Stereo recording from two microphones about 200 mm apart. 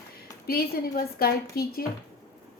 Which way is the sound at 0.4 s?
50° left (ahead or behind).